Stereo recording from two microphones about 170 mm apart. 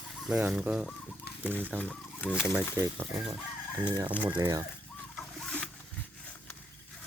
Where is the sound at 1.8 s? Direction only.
10° left (ahead or behind).